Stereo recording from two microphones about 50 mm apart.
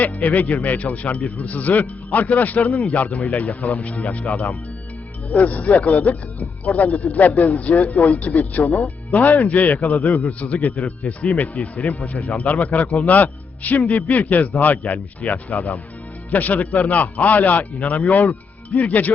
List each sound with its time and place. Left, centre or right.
0.0 s speech: left